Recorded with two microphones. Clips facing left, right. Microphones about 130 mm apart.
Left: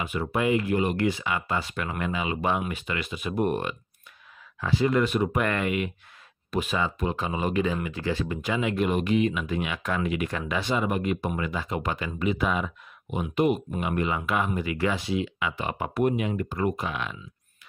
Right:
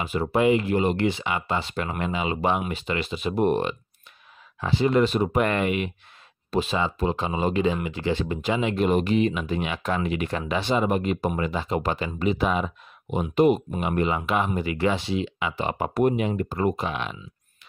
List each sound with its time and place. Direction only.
0.0 s speech: 30° right (ahead or behind)